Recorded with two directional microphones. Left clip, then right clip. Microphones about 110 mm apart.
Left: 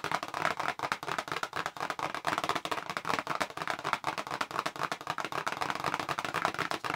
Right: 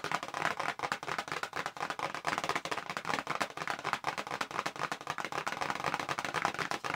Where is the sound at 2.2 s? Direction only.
25° left (ahead or behind).